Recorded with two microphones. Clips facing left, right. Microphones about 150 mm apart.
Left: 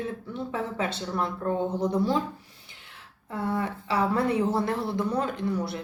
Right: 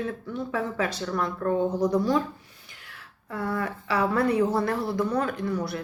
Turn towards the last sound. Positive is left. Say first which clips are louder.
# even
turn(degrees=25)  # may be behind; listen again after turning